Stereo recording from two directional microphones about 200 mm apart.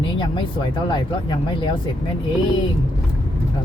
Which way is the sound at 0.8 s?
25° left (ahead or behind).